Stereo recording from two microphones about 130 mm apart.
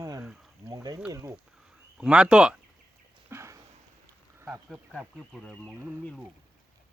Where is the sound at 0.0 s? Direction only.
30° right (ahead or behind).